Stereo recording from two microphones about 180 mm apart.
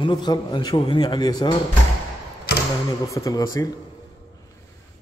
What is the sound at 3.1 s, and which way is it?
Speech, 15° left (ahead or behind).